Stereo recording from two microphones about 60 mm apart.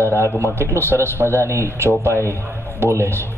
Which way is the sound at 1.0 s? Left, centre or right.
Right.